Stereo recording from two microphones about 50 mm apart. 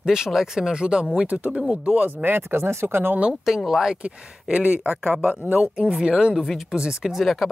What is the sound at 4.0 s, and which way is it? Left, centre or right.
Speech, right.